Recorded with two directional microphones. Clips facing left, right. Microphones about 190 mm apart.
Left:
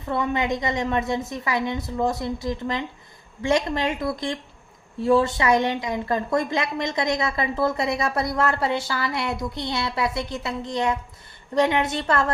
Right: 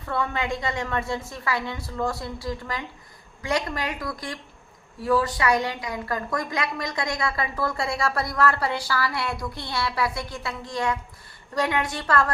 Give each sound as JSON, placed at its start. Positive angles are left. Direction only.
{"t": 0.0, "sound": "a woman's voice", "side_deg": 20}